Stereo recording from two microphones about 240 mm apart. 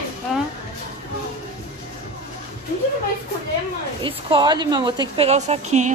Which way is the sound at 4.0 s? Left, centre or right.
Right.